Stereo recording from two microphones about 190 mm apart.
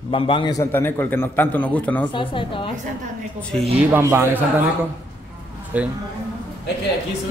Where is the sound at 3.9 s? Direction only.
15° right (ahead or behind).